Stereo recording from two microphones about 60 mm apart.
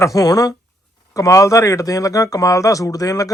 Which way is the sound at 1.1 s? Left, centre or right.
Left.